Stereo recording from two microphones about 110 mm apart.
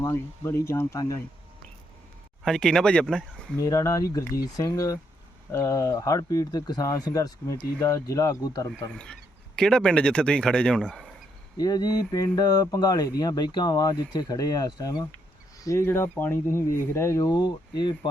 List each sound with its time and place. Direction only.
0.0 s speech: 25° left (ahead or behind)
2.4 s speech: 5° left (ahead or behind)
3.6 s speech: 30° left (ahead or behind)
9.6 s a man's voice: 5° left (ahead or behind)
11.5 s speech: 35° left (ahead or behind)
15.6 s speech: 25° left (ahead or behind)
17.2 s speech: 40° left (ahead or behind)